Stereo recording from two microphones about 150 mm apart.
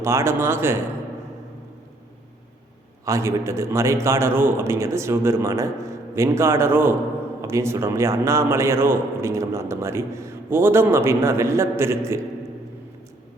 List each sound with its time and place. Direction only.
0.0 s a man's voice: 20° right (ahead or behind)
3.1 s a man's voice: 20° right (ahead or behind)